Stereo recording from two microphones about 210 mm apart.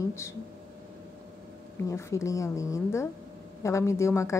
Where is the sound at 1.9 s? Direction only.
15° left (ahead or behind).